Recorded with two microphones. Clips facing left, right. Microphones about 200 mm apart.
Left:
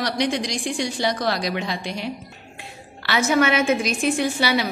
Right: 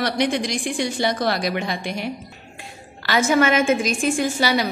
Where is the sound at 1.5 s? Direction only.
55° right (ahead or behind).